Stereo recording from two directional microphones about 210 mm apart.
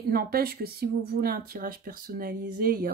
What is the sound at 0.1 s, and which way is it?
Speech, 45° right (ahead or behind).